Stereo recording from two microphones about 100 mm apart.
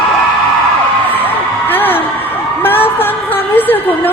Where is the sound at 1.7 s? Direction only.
20° left (ahead or behind).